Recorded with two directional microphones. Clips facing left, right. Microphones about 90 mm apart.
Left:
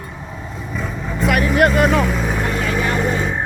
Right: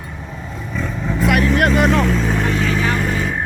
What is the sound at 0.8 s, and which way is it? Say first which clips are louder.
Vehicle: right 2 dB; centre (ahead or behind).